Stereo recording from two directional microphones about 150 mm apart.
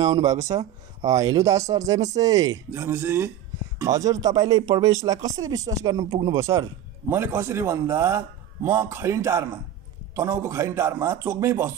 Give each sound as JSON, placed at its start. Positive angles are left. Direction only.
{"t": 0.0, "sound": "a man's voice", "side_deg": -25}